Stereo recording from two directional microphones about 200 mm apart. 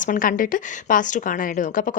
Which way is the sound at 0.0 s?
45° left (ahead or behind).